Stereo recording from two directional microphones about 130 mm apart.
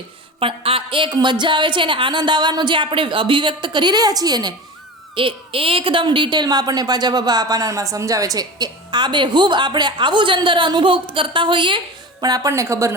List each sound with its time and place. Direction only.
0.3 s a woman's voice: 45° right (ahead or behind)
5.1 s a woman's voice: 45° right (ahead or behind)
12.2 s a woman's voice: 30° right (ahead or behind)